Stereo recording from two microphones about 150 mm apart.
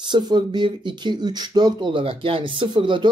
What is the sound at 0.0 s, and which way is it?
Speech, 30° right (ahead or behind).